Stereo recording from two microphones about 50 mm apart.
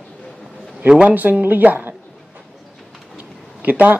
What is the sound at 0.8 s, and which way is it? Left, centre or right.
Speech, centre.